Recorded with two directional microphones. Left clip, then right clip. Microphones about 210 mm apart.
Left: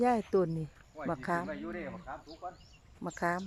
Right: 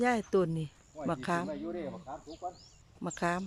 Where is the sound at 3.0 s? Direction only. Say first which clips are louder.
Even; centre (ahead or behind).